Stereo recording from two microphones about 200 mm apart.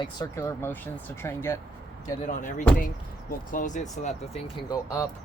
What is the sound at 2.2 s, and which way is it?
Speech, 40° left (ahead or behind).